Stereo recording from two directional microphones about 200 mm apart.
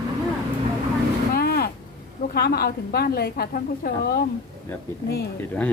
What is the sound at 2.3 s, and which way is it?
A woman's voice, 50° left (ahead or behind).